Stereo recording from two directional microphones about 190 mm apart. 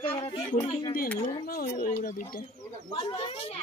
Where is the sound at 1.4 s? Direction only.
50° left (ahead or behind).